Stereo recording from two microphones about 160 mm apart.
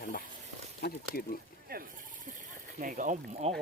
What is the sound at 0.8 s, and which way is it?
Speech, 70° left (ahead or behind).